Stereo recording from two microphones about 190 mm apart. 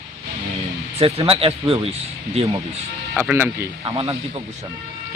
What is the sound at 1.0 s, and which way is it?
Speech, 30° right (ahead or behind).